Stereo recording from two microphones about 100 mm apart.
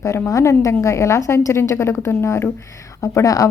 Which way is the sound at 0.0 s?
30° left (ahead or behind).